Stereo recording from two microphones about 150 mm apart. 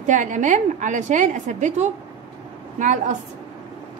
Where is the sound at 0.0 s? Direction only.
55° right (ahead or behind).